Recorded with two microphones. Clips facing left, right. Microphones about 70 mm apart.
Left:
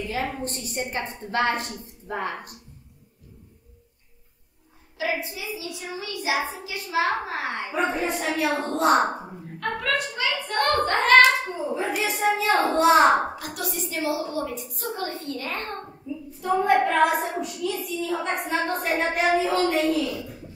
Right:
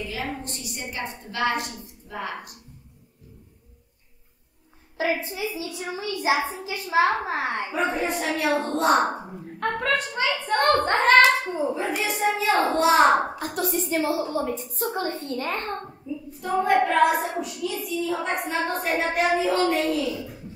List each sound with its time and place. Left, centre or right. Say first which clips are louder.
0.1 s a woman's voice: left 3 dB; left
4.9 s a child's voice: right 2 dB; right
7.7 s a child's voice: left 2 dB; centre
9.6 s a child's voice: right 2 dB; right
11.7 s a child's voice: left 1 dB; centre
13.6 s a child's voice: right 6 dB; right
16.3 s a child's voice: left 1 dB; centre